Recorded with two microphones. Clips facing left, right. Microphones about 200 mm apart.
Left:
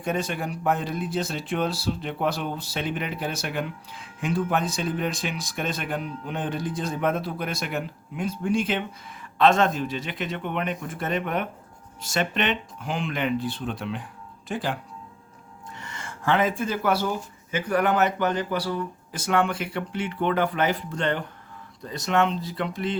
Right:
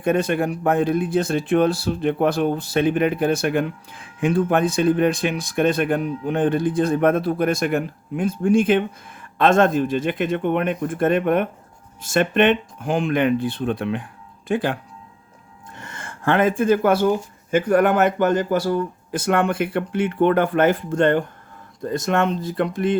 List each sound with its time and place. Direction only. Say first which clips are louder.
0.0 s speech: right 8 dB; 55° right (ahead or behind)